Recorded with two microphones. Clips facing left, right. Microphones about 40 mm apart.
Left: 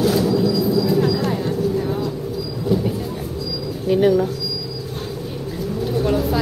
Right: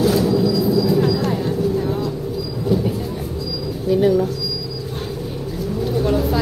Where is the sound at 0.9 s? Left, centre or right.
Centre.